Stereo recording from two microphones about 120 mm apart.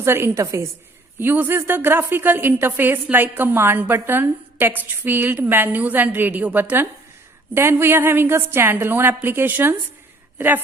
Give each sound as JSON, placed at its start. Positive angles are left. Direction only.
{"t": 0.0, "sound": "a woman's voice", "side_deg": -20}